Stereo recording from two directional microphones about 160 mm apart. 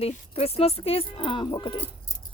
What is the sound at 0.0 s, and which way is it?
Speech, 40° left (ahead or behind).